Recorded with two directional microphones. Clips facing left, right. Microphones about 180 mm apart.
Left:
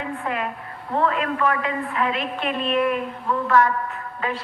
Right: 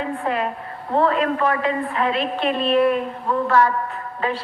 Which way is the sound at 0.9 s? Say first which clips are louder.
Right 3 dB; 35° right (ahead or behind).